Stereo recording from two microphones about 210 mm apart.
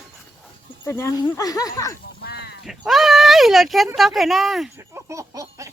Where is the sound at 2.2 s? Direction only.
50° left (ahead or behind).